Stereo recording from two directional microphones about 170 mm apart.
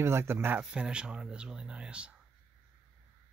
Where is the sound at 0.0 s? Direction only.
15° right (ahead or behind).